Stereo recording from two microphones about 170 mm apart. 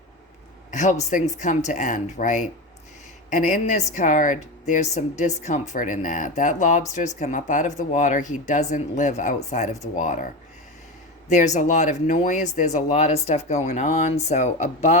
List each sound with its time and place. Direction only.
0.7 s speech: 45° left (ahead or behind)
11.3 s speech: 45° left (ahead or behind)